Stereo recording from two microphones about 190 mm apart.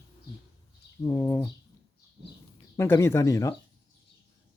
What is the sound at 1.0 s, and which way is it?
Speech, 15° left (ahead or behind).